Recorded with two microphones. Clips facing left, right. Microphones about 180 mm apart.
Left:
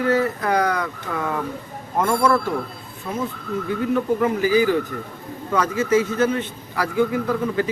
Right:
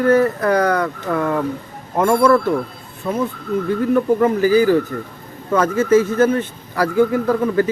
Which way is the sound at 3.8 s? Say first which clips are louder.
Right 4 dB; 50° right (ahead or behind).